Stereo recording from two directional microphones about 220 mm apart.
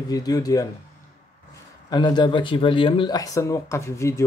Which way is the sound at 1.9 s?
20° left (ahead or behind).